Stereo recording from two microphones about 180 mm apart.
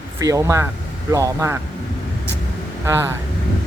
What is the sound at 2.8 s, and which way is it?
Speech, 15° right (ahead or behind).